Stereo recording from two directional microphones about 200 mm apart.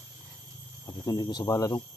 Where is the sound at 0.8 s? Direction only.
20° left (ahead or behind).